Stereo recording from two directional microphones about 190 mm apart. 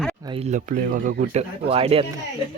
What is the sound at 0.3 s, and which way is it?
Speech, 35° right (ahead or behind).